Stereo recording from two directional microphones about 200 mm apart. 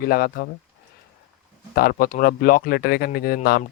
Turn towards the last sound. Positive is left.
turn(degrees=50)  # may be behind; listen again after turning